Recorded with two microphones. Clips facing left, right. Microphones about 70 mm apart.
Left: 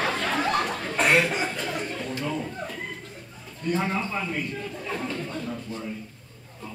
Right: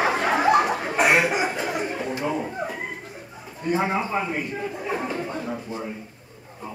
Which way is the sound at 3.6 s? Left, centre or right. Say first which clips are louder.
Right 3 dB; centre.